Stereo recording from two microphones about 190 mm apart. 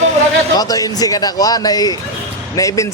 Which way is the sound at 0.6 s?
20° left (ahead or behind).